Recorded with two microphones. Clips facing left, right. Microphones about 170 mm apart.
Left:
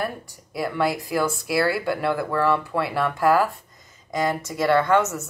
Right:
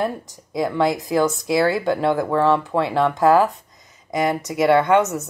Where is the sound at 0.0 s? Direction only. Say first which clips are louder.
Right 5 dB; 15° right (ahead or behind).